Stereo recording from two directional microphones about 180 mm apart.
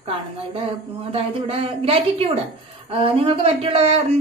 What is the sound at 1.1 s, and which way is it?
Speech, 35° right (ahead or behind).